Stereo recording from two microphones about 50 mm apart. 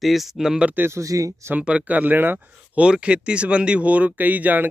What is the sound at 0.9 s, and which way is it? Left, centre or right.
Speech, right.